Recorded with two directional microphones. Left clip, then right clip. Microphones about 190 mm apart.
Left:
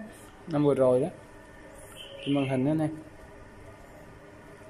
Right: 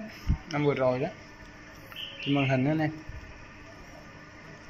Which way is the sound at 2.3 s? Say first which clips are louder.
Even; 5° left (ahead or behind).